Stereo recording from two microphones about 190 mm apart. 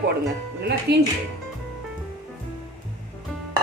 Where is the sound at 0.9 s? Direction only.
60° right (ahead or behind).